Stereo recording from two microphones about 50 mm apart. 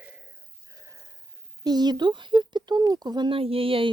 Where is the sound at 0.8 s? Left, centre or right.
Right.